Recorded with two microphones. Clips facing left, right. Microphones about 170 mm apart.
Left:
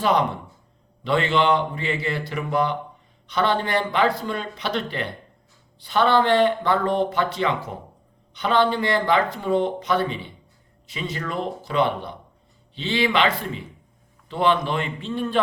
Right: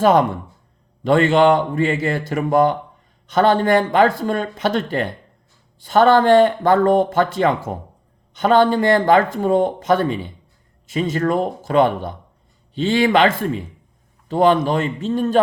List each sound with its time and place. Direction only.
0.0 s speech: 45° right (ahead or behind)